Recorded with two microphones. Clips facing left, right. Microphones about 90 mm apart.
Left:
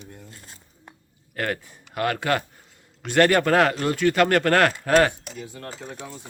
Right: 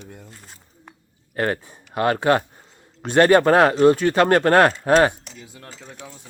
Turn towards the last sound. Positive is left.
turn(degrees=-5)  # may be behind; listen again after turning